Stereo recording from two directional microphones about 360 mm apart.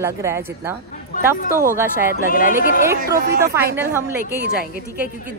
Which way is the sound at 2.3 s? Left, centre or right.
Left.